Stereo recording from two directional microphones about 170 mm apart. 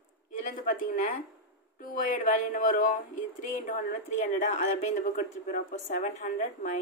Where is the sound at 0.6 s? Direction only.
55° left (ahead or behind).